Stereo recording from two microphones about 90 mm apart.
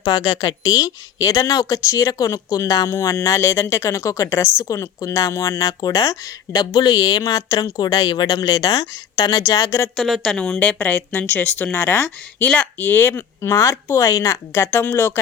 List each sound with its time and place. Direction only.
0.1 s speech: 45° left (ahead or behind)
5.6 s speech: 45° left (ahead or behind)
6.7 s speech: 55° left (ahead or behind)
8.4 s speech: 45° left (ahead or behind)
9.5 s speech: 35° left (ahead or behind)
9.9 s a woman's voice: centre (ahead or behind); by 15.2 s 25° left (ahead or behind)